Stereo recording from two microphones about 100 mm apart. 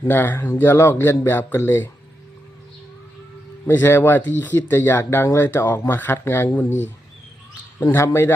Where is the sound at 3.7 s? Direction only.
20° left (ahead or behind).